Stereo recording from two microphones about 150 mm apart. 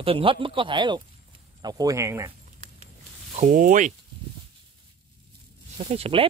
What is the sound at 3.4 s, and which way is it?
Speech, 60° right (ahead or behind).